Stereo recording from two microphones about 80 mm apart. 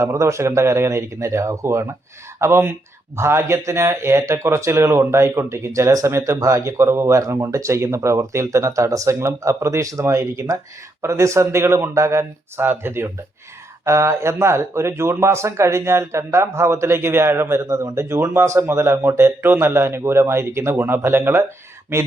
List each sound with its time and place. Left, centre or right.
0.0 s speech: right